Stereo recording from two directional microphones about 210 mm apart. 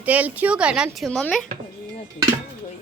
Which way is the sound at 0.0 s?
5° right (ahead or behind).